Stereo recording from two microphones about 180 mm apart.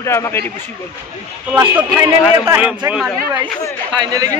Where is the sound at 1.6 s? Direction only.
15° right (ahead or behind).